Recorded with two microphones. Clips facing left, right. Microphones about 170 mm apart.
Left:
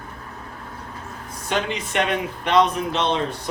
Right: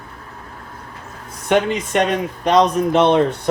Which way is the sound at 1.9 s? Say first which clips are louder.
Right 4 dB; 40° right (ahead or behind).